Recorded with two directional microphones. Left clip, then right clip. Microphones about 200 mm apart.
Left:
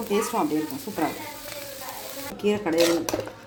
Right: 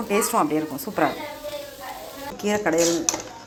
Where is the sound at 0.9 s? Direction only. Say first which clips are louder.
Right 5 dB; 15° right (ahead or behind).